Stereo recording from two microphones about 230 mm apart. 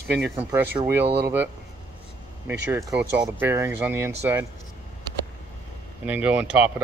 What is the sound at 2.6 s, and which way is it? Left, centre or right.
Speech, centre.